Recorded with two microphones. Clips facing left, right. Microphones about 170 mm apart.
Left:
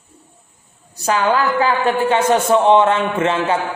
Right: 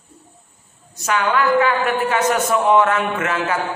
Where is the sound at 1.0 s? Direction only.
30° left (ahead or behind).